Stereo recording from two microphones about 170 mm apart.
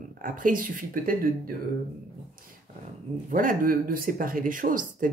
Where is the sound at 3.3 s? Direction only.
50° right (ahead or behind).